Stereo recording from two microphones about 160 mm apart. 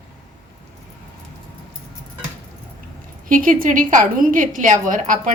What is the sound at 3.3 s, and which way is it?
A woman's voice, 60° right (ahead or behind).